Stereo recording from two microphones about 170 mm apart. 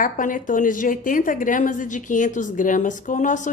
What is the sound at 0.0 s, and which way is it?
Speech, 50° left (ahead or behind).